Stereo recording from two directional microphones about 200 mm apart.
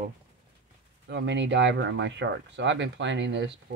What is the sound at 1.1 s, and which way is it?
Speech, 65° right (ahead or behind).